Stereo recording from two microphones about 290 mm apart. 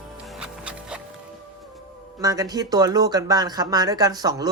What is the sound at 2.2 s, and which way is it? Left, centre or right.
Speech, centre.